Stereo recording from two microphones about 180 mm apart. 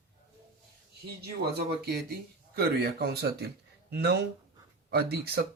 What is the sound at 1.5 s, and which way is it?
Speech, 60° right (ahead or behind).